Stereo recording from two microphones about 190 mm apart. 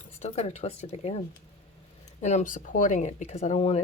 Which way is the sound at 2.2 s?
40° left (ahead or behind).